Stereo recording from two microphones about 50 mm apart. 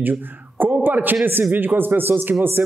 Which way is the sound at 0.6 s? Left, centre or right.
Right.